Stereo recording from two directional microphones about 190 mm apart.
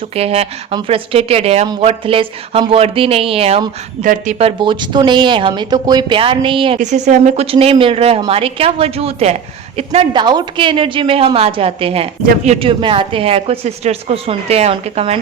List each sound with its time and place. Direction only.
0.2 s speech: 30° right (ahead or behind)
6.7 s a woman's voice: 40° right (ahead or behind)